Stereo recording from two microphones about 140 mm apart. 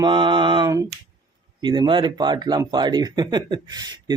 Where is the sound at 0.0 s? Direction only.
35° right (ahead or behind).